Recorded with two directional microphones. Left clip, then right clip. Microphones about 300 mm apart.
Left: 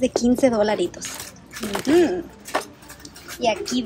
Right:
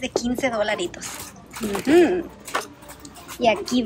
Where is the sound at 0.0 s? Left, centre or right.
Centre.